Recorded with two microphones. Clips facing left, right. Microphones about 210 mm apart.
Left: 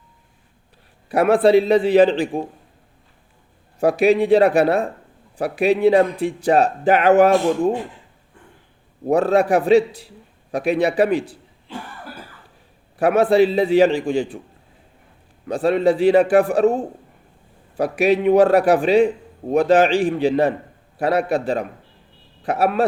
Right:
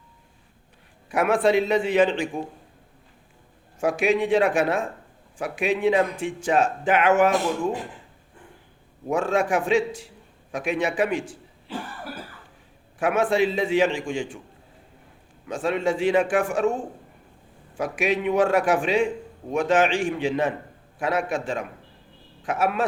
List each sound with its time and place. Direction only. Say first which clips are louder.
1.1 s a man's voice: left 6 dB; 35° left (ahead or behind)
3.8 s a man's voice: left 6 dB; 35° left (ahead or behind)
9.0 s a man's voice: left 7 dB; 35° left (ahead or behind)
13.0 s a man's voice: left 7 dB; 35° left (ahead or behind)
15.4 s a man's voice: left 7 dB; 35° left (ahead or behind)